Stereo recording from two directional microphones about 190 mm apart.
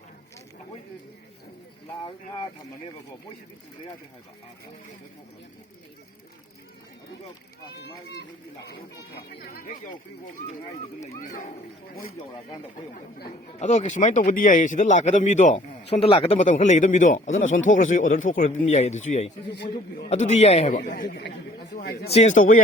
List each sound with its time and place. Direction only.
2.0 s speech: 25° left (ahead or behind)
9.3 s speech: 50° left (ahead or behind)
11.2 s speech: 45° left (ahead or behind)
13.6 s speech: 40° left (ahead or behind)
20.7 s speech: 50° left (ahead or behind)
22.1 s speech: 35° left (ahead or behind)